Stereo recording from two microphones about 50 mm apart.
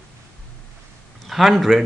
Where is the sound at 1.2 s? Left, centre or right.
Centre.